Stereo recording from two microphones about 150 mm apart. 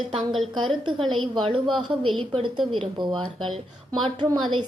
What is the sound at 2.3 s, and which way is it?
A woman's voice, 30° right (ahead or behind).